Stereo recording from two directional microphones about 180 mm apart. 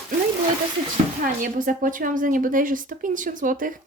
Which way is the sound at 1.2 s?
50° right (ahead or behind).